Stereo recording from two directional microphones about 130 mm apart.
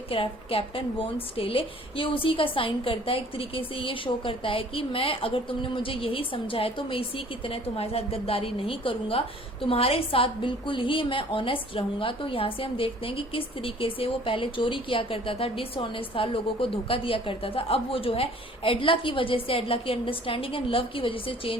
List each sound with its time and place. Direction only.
0.1 s a woman's voice: 45° left (ahead or behind)